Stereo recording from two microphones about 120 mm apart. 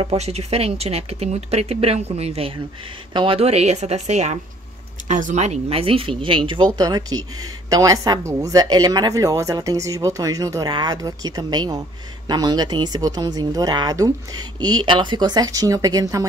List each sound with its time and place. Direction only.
0.0 s speech: 55° right (ahead or behind)
3.1 s speech: 40° right (ahead or behind)
3.3 s speech: 60° right (ahead or behind)
5.0 s a woman's voice: 90° right; by 16.3 s 30° right (ahead or behind)